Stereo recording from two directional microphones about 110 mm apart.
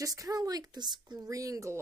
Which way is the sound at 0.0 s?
30° right (ahead or behind).